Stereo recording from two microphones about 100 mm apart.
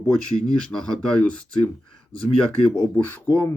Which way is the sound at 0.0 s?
5° left (ahead or behind).